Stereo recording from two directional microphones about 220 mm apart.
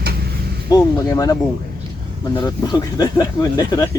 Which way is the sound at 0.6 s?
15° left (ahead or behind).